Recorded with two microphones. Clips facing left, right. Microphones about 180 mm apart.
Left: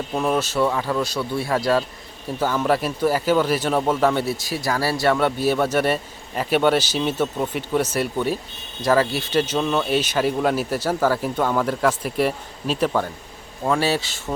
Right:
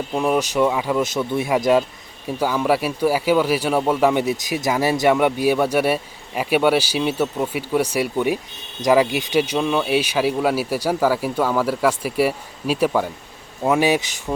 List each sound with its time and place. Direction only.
0.1 s speech: 10° right (ahead or behind)